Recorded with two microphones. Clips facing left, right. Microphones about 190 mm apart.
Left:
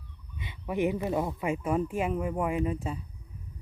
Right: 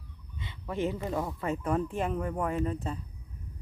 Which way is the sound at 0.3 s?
15° left (ahead or behind).